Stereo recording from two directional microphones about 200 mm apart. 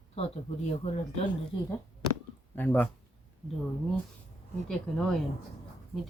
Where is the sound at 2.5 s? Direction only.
10° left (ahead or behind).